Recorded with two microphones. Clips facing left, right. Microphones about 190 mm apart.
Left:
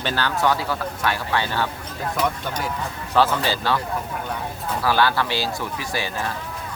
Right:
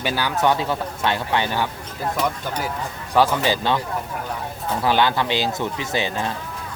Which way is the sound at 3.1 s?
15° right (ahead or behind).